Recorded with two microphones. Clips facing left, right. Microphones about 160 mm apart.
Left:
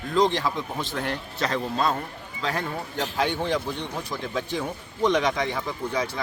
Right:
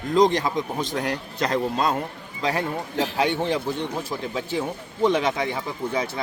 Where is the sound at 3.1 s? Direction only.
15° right (ahead or behind).